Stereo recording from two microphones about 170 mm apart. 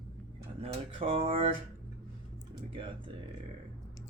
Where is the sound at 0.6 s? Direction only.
30° right (ahead or behind).